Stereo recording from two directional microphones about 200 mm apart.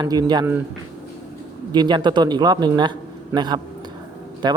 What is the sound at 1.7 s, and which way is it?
Speech, 20° right (ahead or behind).